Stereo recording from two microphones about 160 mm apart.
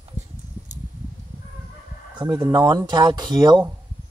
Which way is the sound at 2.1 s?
25° right (ahead or behind).